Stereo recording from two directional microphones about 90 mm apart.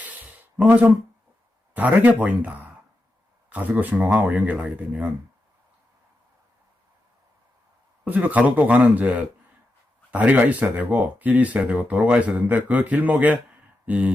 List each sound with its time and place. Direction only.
0.0 s a sound: 15° right (ahead or behind)
1.7 s speech: 15° right (ahead or behind)
8.0 s speech: 20° right (ahead or behind)